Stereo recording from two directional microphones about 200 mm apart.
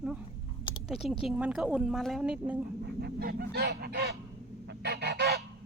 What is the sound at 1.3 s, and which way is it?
Speech, 5° right (ahead or behind).